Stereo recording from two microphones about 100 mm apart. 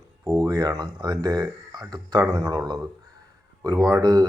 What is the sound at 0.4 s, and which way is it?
Speech, 40° right (ahead or behind).